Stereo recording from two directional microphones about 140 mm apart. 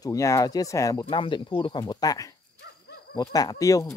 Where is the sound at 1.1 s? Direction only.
35° left (ahead or behind).